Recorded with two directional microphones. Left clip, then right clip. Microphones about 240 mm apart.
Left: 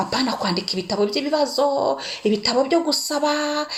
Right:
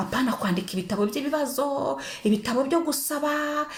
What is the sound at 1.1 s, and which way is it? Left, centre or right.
Speech, centre.